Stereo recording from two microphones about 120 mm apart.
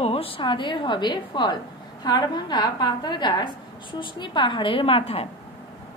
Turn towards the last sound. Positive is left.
turn(degrees=50)  # may be behind; listen again after turning